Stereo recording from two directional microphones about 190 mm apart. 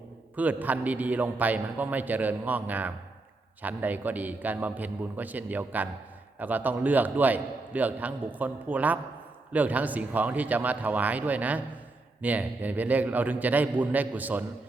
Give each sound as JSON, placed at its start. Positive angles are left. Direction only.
{"t": 0.3, "sound": "a man's voice", "side_deg": -10}